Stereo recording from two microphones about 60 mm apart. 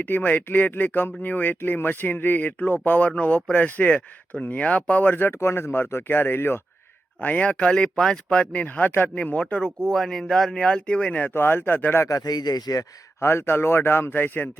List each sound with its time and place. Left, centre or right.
0.0 s speech: left
5.3 s speech: left
7.2 s speech: left
8.6 s speech: left
11.3 s speech: left
12.0 s speech: left
13.1 s speech: left